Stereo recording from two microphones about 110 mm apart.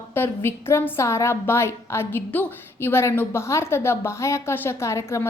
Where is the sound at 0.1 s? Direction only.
20° left (ahead or behind).